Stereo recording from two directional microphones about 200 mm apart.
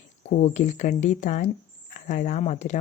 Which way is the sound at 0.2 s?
40° left (ahead or behind).